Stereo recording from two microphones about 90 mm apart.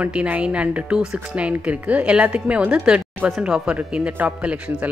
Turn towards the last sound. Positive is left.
turn(degrees=-15)  # may be behind; listen again after turning